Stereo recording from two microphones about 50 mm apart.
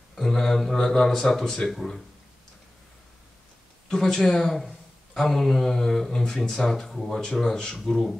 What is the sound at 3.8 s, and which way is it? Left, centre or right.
A man's voice, centre.